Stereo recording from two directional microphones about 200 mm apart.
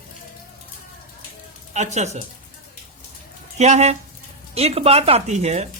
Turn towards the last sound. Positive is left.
turn(degrees=-35)  # may be behind; listen again after turning